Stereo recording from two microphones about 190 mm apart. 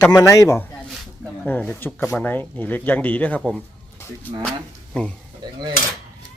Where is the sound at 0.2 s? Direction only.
15° left (ahead or behind).